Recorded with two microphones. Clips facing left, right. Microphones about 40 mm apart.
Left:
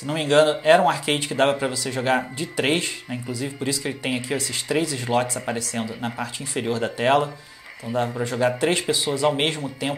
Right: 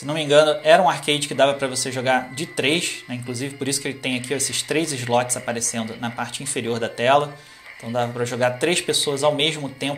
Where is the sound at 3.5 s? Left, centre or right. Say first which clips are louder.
Even; right.